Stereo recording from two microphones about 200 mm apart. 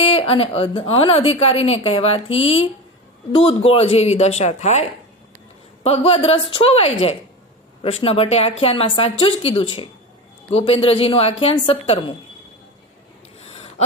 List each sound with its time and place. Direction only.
0.0 s a woman's voice: 30° left (ahead or behind)
13.4 s gasp: 30° left (ahead or behind)